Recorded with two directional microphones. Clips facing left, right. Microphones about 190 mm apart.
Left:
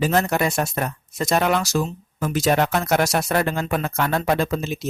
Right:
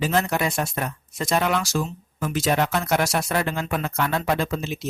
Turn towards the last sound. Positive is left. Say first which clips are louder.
# left 3 dB
turn(degrees=45)  # may be behind; listen again after turning